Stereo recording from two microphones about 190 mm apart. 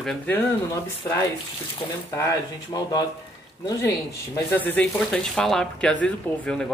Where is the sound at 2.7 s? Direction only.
20° left (ahead or behind).